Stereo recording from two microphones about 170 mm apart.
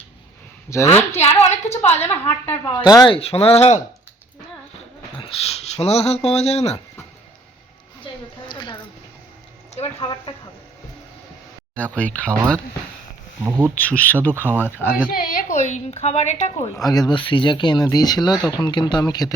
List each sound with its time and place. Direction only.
0.7 s speech: 15° left (ahead or behind)
1.2 s a woman's voice: 40° left (ahead or behind)
1.7 s speech: 15° left (ahead or behind)
2.2 s a woman's voice: 35° left (ahead or behind)
2.8 s speech: 25° left (ahead or behind)
3.2 s a woman's voice: 35° left (ahead or behind)
5.1 s speech: 35° left (ahead or behind)
8.0 s a sound: 25° left (ahead or behind)
11.8 s speech: 10° left (ahead or behind)
13.4 s speech: 10° right (ahead or behind)
13.7 s speech: 10° left (ahead or behind)
15.1 s a woman's voice: 50° left (ahead or behind)
16.6 s speech: 20° left (ahead or behind)